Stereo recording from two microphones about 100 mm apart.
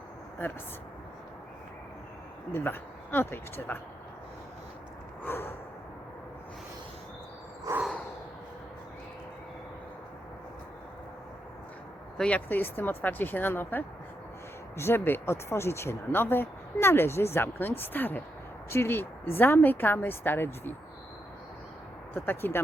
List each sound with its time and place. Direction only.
2.5 s speech: 20° left (ahead or behind)
5.2 s speech: 20° left (ahead or behind)
12.1 s speech: 10° left (ahead or behind)
22.1 s speech: 20° left (ahead or behind)